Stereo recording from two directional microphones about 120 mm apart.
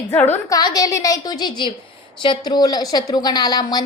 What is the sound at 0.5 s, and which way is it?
A woman's voice, 30° left (ahead or behind).